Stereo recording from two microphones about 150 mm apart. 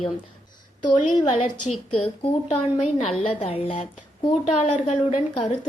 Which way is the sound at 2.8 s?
50° left (ahead or behind).